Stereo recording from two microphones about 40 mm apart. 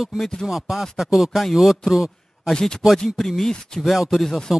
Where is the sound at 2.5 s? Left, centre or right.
Centre.